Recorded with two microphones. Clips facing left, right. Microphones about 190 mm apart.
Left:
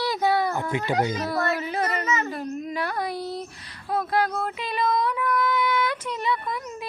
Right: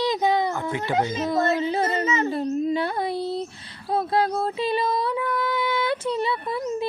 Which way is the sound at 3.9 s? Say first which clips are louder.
Right 2 dB; 30° right (ahead or behind).